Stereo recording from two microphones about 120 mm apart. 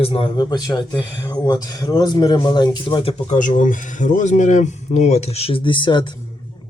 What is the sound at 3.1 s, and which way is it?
Speech, 75° left (ahead or behind).